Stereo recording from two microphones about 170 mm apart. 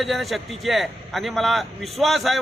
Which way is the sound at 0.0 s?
Centre (ahead or behind).